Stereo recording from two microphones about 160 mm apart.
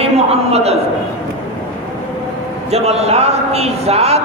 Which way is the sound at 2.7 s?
40° right (ahead or behind).